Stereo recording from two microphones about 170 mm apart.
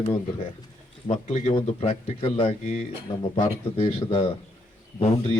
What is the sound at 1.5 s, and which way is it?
Speech, 35° left (ahead or behind).